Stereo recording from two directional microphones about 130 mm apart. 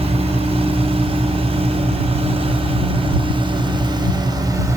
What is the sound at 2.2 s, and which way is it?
Vehicle, 45° right (ahead or behind).